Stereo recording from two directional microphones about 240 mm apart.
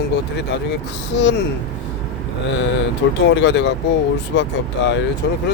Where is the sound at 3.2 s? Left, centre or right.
Left.